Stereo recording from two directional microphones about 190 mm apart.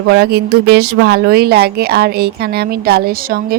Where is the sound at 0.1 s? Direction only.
60° right (ahead or behind).